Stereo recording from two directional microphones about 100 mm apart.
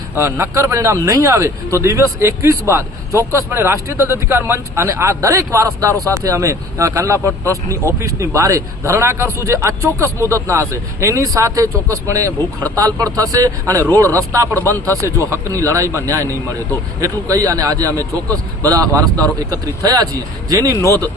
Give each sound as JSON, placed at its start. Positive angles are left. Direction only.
{"t": 0.2, "sound": "a man's voice", "side_deg": -25}